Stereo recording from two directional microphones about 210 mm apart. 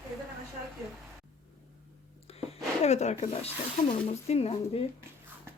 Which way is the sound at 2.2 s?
30° left (ahead or behind).